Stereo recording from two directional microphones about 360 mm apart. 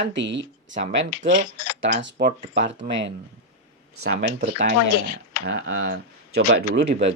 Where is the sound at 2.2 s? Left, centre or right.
Right.